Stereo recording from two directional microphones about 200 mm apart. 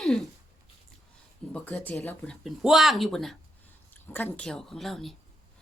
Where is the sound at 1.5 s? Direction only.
5° left (ahead or behind).